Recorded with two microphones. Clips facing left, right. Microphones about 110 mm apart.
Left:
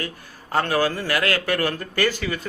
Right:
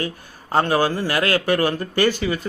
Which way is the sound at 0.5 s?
25° right (ahead or behind).